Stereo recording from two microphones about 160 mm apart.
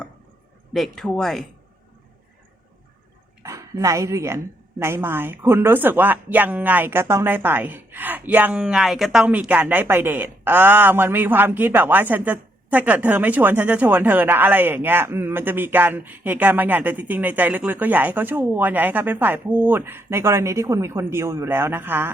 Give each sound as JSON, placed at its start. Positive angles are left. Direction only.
{"t": 0.7, "sound": "speech", "side_deg": 0}
{"t": 3.4, "sound": "speech", "side_deg": -20}